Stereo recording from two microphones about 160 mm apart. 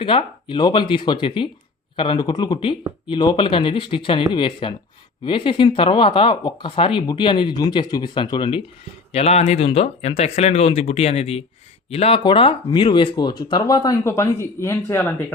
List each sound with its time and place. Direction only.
0.0 s speech: 35° left (ahead or behind)
9.1 s speech: 40° left (ahead or behind); by 15.1 s 15° left (ahead or behind)